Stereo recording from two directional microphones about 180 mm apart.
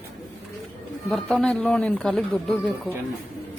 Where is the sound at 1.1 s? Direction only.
5° left (ahead or behind).